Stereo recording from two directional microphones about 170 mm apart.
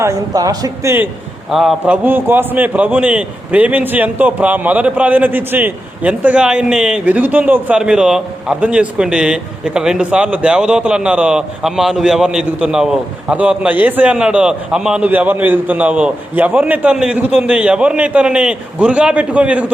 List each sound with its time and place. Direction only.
0.0 s a man's voice: 20° right (ahead or behind)
1.5 s a man's voice: centre (ahead or behind)